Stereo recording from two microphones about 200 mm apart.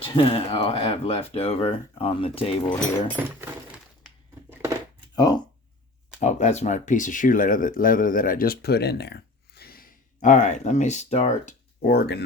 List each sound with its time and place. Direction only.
0.0 s speech: 25° left (ahead or behind)
5.1 s speech: 20° left (ahead or behind)
6.1 s speech: 35° left (ahead or behind)
11.9 s speech: 55° left (ahead or behind)